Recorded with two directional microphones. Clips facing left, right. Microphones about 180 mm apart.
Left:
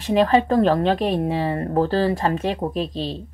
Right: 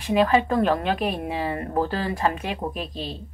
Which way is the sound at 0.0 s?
35° left (ahead or behind).